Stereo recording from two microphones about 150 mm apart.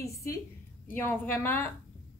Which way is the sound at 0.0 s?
20° left (ahead or behind).